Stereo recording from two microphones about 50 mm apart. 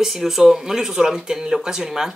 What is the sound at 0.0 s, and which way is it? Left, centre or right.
Speech, centre.